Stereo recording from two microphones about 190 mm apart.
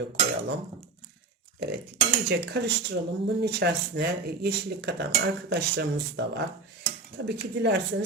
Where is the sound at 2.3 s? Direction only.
60° right (ahead or behind).